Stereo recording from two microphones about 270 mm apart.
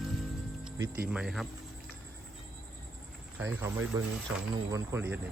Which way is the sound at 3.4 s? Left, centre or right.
Centre.